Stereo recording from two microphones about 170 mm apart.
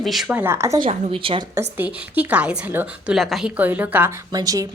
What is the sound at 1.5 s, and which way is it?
A woman's voice, 10° right (ahead or behind).